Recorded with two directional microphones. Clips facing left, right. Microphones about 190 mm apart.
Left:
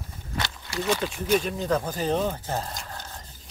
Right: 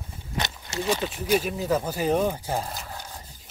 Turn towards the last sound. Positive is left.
turn(degrees=-10)  # may be behind; listen again after turning